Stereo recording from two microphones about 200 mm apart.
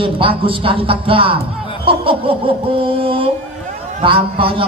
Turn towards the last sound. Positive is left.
turn(degrees=-25)  # may be behind; listen again after turning